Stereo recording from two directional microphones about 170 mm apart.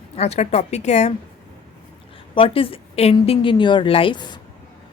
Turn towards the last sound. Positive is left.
turn(degrees=25)  # may be behind; listen again after turning